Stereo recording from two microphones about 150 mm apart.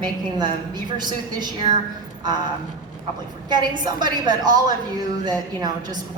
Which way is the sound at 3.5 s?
30° right (ahead or behind).